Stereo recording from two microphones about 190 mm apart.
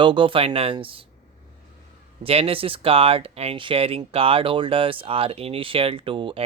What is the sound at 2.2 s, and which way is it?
Speech, 30° right (ahead or behind).